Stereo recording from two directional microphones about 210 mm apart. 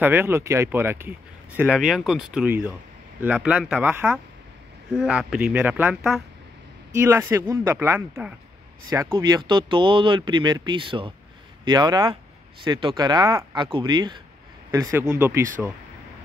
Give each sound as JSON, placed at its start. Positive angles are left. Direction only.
{"t": 0.0, "sound": "speech", "side_deg": -10}